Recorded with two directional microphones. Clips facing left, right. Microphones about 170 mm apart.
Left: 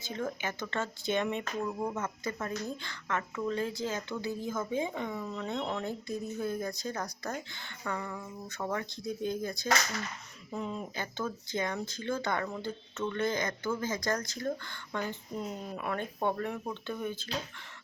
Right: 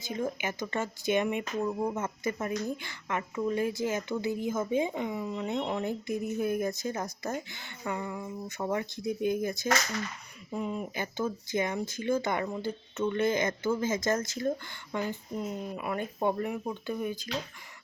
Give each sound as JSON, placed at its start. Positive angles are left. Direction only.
{"t": 0.1, "sound": "speech", "side_deg": -15}
{"t": 15.4, "sound": "speech", "side_deg": -5}